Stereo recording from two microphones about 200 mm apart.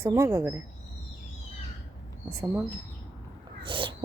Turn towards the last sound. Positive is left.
turn(degrees=-25)  # may be behind; listen again after turning